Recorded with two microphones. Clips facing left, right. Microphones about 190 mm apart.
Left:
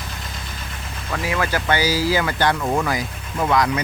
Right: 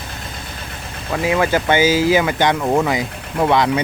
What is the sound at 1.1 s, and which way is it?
Speech, 20° right (ahead or behind).